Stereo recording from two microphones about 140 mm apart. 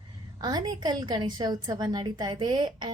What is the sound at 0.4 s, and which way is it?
A woman's voice, 30° right (ahead or behind).